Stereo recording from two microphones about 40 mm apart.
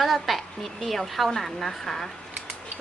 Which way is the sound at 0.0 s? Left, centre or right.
Centre.